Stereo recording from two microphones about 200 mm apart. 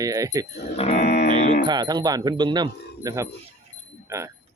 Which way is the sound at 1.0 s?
55° left (ahead or behind).